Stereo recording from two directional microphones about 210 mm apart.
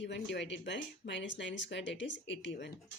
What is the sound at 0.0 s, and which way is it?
Speech, 55° left (ahead or behind).